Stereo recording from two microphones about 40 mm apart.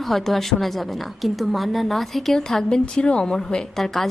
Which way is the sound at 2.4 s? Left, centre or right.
Centre.